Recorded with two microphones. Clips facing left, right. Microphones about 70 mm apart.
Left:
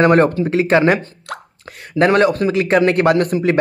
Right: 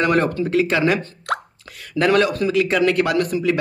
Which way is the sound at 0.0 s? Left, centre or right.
Left.